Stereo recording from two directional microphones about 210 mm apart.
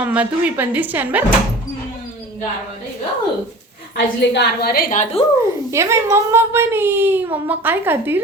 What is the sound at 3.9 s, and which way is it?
A woman's voice, 55° left (ahead or behind).